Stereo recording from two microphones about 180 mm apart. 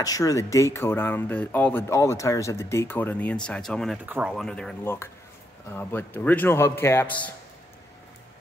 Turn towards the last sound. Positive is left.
turn(degrees=10)  # may be behind; listen again after turning